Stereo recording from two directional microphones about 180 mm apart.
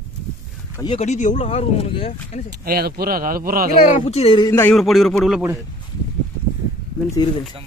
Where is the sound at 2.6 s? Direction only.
55° right (ahead or behind).